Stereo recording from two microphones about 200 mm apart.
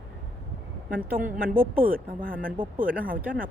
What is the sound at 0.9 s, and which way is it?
Speech, 45° right (ahead or behind).